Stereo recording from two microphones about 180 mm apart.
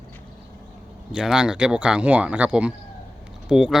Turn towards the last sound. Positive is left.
turn(degrees=-5)  # may be behind; listen again after turning